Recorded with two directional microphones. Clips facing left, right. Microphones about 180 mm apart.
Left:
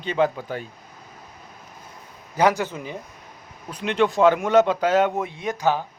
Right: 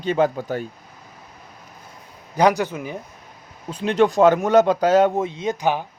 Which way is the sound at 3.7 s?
35° right (ahead or behind).